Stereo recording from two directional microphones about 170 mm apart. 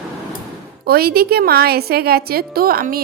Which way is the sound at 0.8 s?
65° right (ahead or behind).